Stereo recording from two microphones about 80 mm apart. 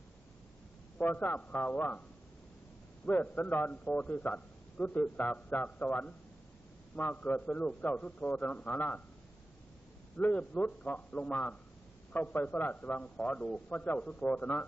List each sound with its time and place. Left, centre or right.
0.9 s a man's voice: left
3.1 s a man's voice: left
10.1 s a man's voice: left